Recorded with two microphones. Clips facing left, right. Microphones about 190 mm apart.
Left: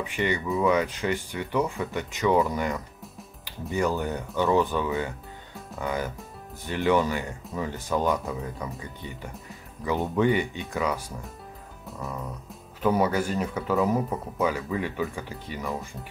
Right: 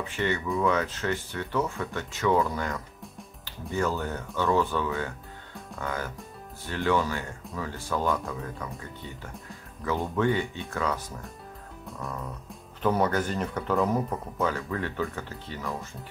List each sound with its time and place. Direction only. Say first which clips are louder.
0.0 s speech: left 1 dB; 15° left (ahead or behind)
9.8 s speech: left 3 dB; 15° left (ahead or behind)
12.8 s speech: left 2 dB; 10° left (ahead or behind)